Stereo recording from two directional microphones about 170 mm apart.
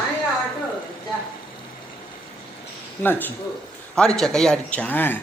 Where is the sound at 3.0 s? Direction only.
10° left (ahead or behind).